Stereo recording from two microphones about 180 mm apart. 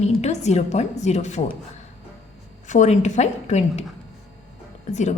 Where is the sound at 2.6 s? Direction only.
40° left (ahead or behind).